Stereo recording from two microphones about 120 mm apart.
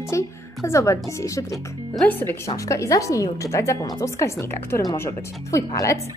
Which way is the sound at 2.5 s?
25° left (ahead or behind).